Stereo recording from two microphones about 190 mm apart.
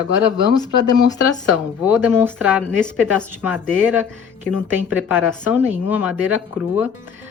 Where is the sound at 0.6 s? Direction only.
20° left (ahead or behind).